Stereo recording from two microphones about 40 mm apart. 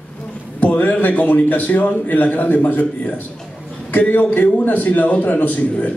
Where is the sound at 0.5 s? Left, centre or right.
Left.